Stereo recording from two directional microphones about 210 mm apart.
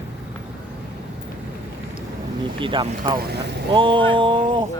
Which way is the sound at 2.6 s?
25° right (ahead or behind).